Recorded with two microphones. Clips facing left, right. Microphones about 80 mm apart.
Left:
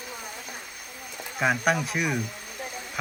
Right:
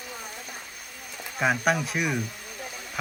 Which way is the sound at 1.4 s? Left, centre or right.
Centre.